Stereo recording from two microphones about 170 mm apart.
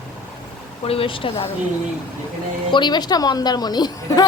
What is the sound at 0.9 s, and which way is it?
Speech, 30° left (ahead or behind).